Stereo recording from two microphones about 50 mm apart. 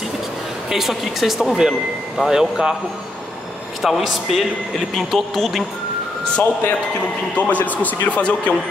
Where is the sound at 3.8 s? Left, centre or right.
Centre.